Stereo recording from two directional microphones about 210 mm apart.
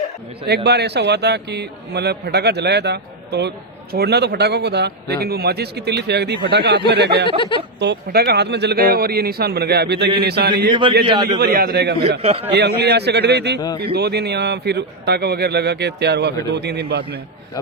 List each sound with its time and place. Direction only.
0.4 s speech: 50° right (ahead or behind)
7.3 s speech: 25° left (ahead or behind)
7.8 s speech: 50° right (ahead or behind)
10.7 s a man's voice: 25° right (ahead or behind)
11.3 s speech: 45° right (ahead or behind)
12.2 s a man's voice: 25° right (ahead or behind)
12.5 s speech: 50° right (ahead or behind)